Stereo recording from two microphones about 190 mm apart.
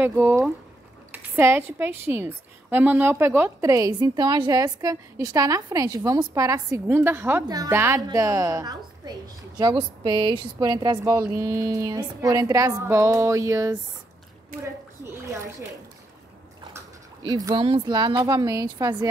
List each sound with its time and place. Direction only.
0.0 s speech: 10° right (ahead or behind)
1.1 s a sound: 10° right (ahead or behind)
1.8 s speech: 10° right (ahead or behind)
17.2 s a woman's voice: 20° right (ahead or behind)